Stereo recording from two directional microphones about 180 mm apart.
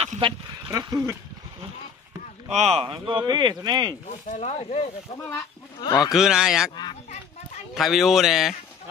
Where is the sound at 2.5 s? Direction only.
35° right (ahead or behind).